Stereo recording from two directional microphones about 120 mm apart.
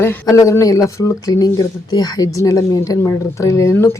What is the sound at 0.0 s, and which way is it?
Speech, 25° left (ahead or behind).